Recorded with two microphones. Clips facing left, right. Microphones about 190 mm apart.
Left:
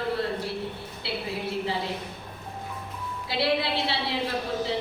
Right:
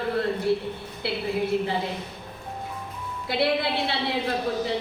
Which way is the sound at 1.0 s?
55° right (ahead or behind).